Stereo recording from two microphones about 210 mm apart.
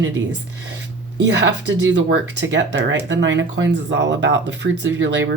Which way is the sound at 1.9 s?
60° right (ahead or behind).